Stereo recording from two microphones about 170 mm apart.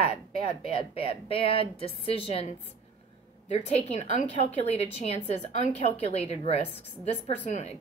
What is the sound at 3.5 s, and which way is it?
Speech, 40° left (ahead or behind).